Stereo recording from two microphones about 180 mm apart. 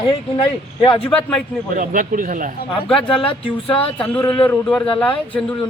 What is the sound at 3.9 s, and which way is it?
Speech, 10° left (ahead or behind).